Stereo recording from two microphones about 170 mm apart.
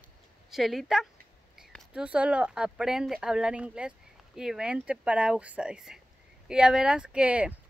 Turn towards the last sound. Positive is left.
turn(degrees=-5)  # may be behind; listen again after turning